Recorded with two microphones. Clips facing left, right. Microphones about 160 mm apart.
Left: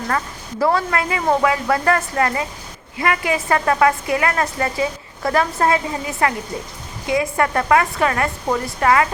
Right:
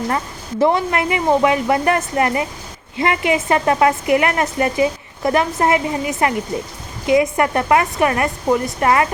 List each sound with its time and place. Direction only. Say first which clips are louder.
0.6 s a woman's voice: right 2 dB; 20° right (ahead or behind)